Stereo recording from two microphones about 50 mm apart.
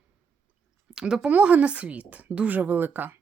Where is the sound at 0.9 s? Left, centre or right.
Centre.